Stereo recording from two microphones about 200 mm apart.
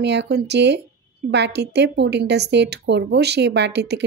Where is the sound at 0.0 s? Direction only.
60° right (ahead or behind).